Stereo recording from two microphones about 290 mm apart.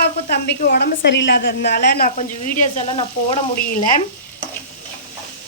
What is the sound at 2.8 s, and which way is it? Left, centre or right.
Speech, left.